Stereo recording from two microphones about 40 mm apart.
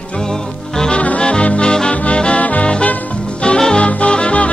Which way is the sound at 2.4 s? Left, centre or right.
Left.